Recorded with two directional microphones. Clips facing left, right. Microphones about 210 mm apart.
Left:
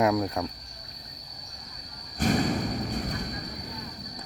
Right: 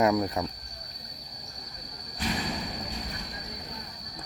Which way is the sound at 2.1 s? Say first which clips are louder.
Left 7 dB; 50° left (ahead or behind).